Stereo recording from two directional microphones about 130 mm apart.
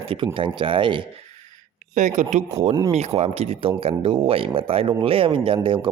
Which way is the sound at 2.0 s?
70° right (ahead or behind).